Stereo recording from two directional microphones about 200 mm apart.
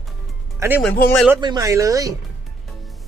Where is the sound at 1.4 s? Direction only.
20° right (ahead or behind).